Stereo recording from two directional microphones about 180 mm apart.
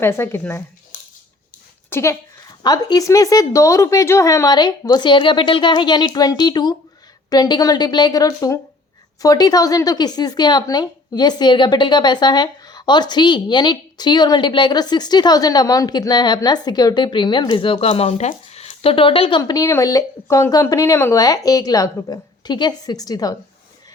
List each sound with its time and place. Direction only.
0.0 s speech: 15° left (ahead or behind)
1.9 s a woman's voice: 15° left (ahead or behind)